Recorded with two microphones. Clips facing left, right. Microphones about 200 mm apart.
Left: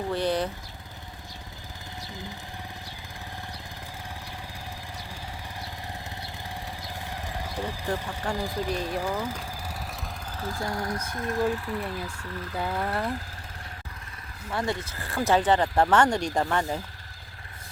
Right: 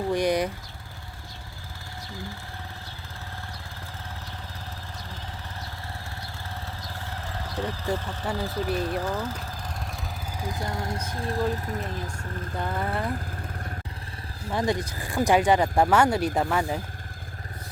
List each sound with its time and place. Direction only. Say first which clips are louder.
0.1 s speech: right 3 dB; 15° right (ahead or behind)
6.8 s vehicle: left 1 dB; 15° left (ahead or behind)
7.9 s speech: even; 10° left (ahead or behind)
10.3 s speech: left 1 dB; 15° right (ahead or behind); by 12.2 s 45° right (ahead or behind)
12.5 s vehicle: even; 5° left (ahead or behind)
14.5 s speech: right 3 dB; 15° right (ahead or behind)